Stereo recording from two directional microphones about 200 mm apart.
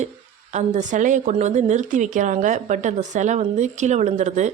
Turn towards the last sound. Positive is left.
turn(degrees=-35)  # may be behind; listen again after turning